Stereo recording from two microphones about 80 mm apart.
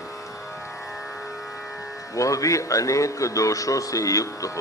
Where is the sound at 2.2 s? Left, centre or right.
Left.